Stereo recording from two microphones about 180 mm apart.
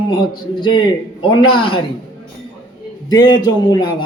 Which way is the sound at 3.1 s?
25° left (ahead or behind).